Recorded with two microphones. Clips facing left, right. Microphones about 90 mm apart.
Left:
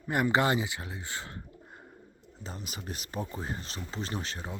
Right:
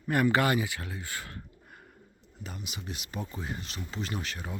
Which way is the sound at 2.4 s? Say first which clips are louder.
Even; 35° left (ahead or behind).